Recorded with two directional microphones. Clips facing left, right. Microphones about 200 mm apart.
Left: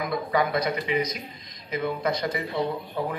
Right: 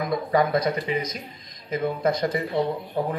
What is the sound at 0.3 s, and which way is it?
A man's voice, 45° right (ahead or behind).